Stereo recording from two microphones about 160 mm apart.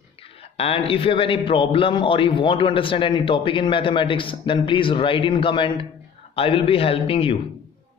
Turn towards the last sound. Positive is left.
turn(degrees=35)  # may be behind; listen again after turning